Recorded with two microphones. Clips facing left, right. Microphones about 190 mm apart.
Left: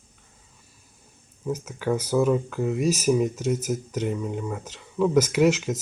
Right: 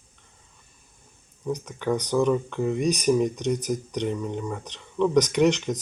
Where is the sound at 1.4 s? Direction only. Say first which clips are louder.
Even; 5° left (ahead or behind).